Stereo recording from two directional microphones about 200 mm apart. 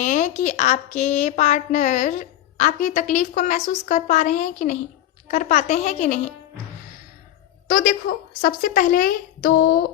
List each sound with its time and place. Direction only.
0.0 s a woman's voice: 40° left (ahead or behind)
7.7 s a woman's voice: 45° left (ahead or behind)